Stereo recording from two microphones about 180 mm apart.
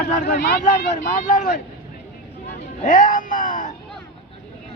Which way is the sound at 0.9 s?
45° left (ahead or behind).